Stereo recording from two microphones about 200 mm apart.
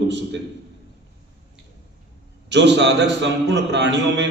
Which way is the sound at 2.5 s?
60° right (ahead or behind).